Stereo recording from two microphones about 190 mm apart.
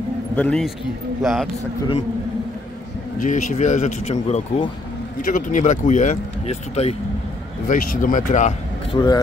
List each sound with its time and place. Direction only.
0.4 s a man's voice: 5° left (ahead or behind)
3.2 s speech: 40° left (ahead or behind)
7.6 s speech: 45° left (ahead or behind)
8.9 s a man's voice: 20° left (ahead or behind)